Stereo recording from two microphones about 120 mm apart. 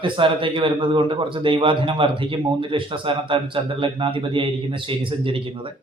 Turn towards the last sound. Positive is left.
turn(degrees=-45)  # may be behind; listen again after turning